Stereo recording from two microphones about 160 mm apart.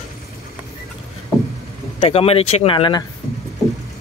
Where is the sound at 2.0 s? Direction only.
40° left (ahead or behind).